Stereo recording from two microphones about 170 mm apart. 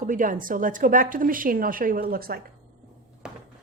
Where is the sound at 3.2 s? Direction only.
5° right (ahead or behind).